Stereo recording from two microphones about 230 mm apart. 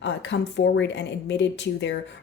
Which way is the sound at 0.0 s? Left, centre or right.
Left.